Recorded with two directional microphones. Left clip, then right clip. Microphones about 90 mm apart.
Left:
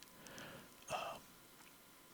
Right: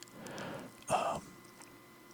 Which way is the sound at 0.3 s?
30° right (ahead or behind).